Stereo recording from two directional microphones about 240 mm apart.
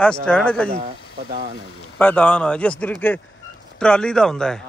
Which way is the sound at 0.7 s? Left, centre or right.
Right.